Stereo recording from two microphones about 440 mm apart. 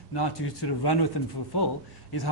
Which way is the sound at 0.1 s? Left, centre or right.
Left.